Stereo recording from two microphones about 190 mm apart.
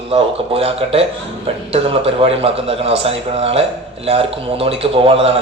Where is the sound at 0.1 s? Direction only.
30° right (ahead or behind).